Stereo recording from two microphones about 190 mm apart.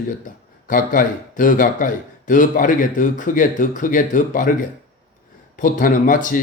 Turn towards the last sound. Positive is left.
turn(degrees=45)  # may be behind; listen again after turning